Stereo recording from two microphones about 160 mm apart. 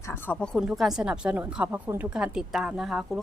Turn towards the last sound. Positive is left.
turn(degrees=0)  # may be behind; listen again after turning